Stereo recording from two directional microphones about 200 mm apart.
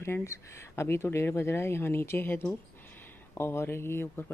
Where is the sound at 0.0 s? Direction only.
15° left (ahead or behind).